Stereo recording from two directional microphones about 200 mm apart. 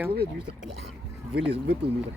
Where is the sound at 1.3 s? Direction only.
55° right (ahead or behind).